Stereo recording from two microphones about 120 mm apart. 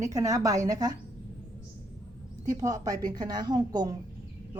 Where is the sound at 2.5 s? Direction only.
30° right (ahead or behind).